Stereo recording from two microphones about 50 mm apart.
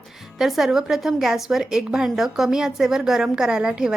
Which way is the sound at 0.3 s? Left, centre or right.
Centre.